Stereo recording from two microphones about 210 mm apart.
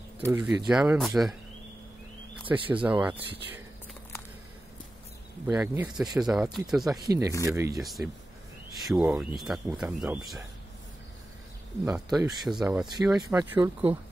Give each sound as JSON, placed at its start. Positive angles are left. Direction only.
{"t": 0.3, "sound": "speech", "side_deg": -5}
{"t": 2.4, "sound": "speech", "side_deg": -25}
{"t": 2.7, "sound": "speech", "side_deg": -5}
{"t": 5.5, "sound": "speech", "side_deg": -15}
{"t": 5.9, "sound": "speech", "side_deg": -5}
{"t": 7.1, "sound": "speech", "side_deg": -15}
{"t": 7.8, "sound": "speech", "side_deg": 0}
{"t": 11.8, "sound": "speech", "side_deg": 0}
{"t": 12.8, "sound": "speech", "side_deg": -20}